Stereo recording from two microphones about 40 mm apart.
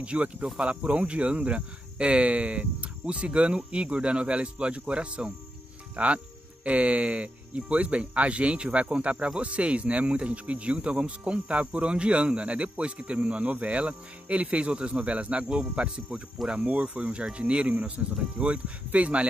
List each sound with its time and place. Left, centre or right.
0.0 s speech: right
18.4 s speech: centre
18.9 s speech: right